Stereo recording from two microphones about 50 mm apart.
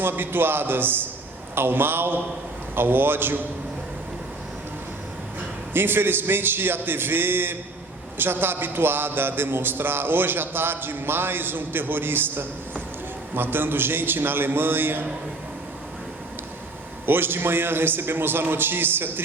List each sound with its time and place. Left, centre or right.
0.0 s a man's voice: right
5.7 s a man's voice: right
17.1 s a man's voice: right